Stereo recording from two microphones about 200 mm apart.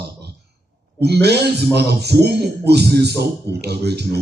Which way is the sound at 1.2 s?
55° right (ahead or behind).